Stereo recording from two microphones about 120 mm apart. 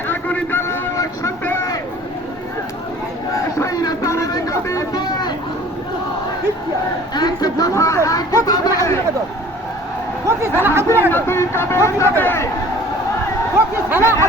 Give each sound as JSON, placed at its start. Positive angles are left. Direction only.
{"t": 0.1, "sound": "vehicle", "side_deg": 15}
{"t": 3.6, "sound": "vehicle", "side_deg": 30}
{"t": 7.1, "sound": "vehicle", "side_deg": 35}
{"t": 8.4, "sound": "chatter", "side_deg": 30}
{"t": 10.2, "sound": "speech", "side_deg": -20}
{"t": 11.1, "sound": "speech", "side_deg": 20}
{"t": 13.9, "sound": "a sound", "side_deg": -20}